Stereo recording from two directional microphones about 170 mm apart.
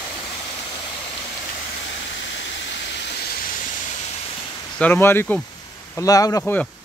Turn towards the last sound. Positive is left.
turn(degrees=5)  # may be behind; listen again after turning